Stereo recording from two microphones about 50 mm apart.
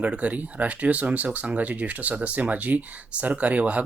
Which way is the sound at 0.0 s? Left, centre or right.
Right.